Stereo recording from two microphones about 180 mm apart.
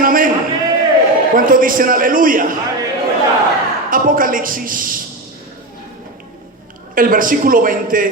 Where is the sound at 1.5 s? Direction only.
50° right (ahead or behind).